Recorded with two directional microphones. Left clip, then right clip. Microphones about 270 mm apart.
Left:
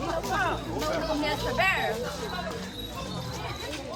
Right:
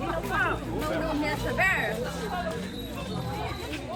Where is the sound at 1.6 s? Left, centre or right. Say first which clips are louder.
Right 1 dB; centre.